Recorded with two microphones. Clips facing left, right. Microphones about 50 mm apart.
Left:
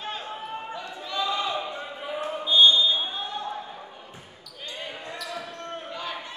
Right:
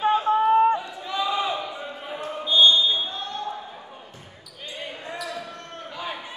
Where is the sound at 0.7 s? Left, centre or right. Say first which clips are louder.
Right 3 dB; centre.